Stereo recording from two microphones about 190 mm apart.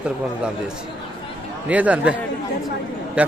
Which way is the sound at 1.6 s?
5° right (ahead or behind).